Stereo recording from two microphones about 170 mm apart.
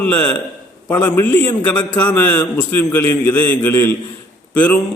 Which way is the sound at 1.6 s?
25° left (ahead or behind).